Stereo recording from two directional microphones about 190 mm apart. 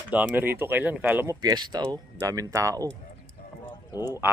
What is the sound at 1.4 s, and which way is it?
Speech, 20° right (ahead or behind).